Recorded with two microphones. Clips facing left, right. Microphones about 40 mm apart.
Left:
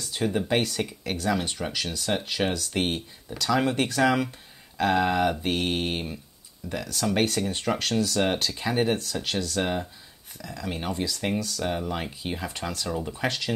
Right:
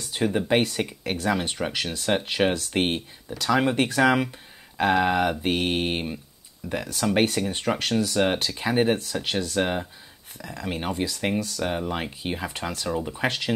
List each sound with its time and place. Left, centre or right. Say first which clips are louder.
0.0 s a sound: right 2 dB; right
0.4 s speech: right 3 dB; right
3.3 s speech: right 2 dB; centre